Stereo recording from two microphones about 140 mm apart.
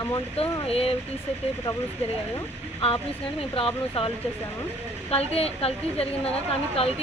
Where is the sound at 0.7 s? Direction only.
45° left (ahead or behind).